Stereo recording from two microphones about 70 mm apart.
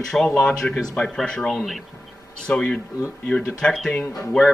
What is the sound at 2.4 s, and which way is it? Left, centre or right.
Speech, centre.